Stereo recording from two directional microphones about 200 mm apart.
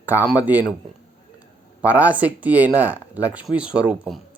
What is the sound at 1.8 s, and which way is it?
Speech, 5° right (ahead or behind).